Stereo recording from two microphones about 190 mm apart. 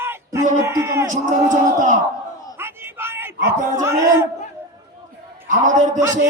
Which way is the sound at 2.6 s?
10° right (ahead or behind).